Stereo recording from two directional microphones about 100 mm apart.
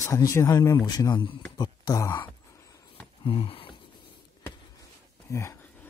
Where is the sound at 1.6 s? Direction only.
40° left (ahead or behind).